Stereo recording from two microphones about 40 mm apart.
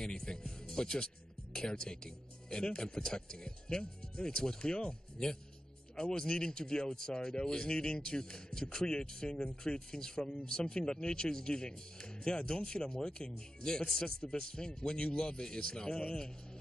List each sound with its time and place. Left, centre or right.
0.0 s speech: centre